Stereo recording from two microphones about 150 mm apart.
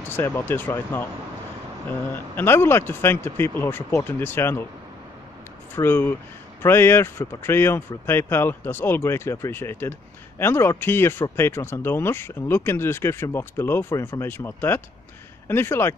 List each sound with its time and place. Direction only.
0.1 s speech: 15° left (ahead or behind)
5.8 s speech: 15° left (ahead or behind)